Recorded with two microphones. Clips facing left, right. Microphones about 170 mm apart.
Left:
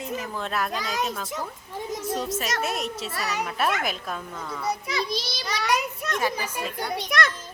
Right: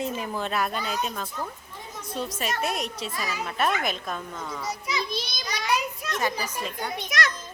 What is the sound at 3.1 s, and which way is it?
Speech, 70° left (ahead or behind).